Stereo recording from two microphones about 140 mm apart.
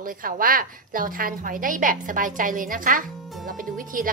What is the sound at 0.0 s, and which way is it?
A woman's voice, 85° right.